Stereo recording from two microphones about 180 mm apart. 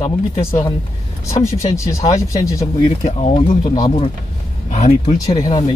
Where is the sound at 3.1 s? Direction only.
40° left (ahead or behind).